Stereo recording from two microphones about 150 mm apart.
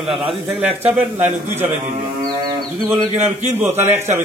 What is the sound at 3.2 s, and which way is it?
Speech, 50° right (ahead or behind).